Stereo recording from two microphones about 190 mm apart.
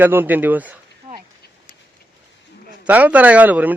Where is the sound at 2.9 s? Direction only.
10° right (ahead or behind).